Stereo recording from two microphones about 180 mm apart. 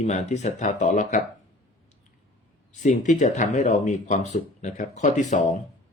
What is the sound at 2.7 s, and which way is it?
Speech, 40° left (ahead or behind).